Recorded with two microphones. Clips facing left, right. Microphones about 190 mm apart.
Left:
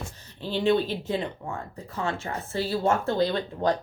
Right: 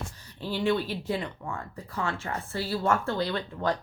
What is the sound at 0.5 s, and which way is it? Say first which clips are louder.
Speech: left 4 dB; 25° left (ahead or behind).